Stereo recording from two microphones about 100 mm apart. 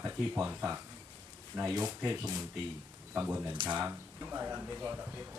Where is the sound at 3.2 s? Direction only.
20° right (ahead or behind).